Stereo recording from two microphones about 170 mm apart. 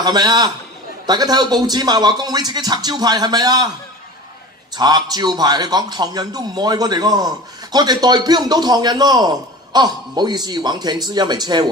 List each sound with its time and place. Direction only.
0.0 s a man's voice: 25° right (ahead or behind)
4.7 s a man's voice: 25° right (ahead or behind)